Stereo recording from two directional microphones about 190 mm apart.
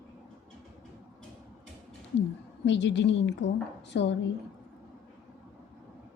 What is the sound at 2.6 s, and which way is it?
A woman's voice, 70° left (ahead or behind).